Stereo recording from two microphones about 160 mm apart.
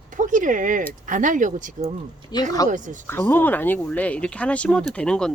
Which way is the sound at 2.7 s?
50° right (ahead or behind).